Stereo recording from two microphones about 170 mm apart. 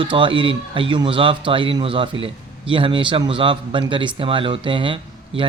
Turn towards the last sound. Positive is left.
turn(degrees=-30)  # may be behind; listen again after turning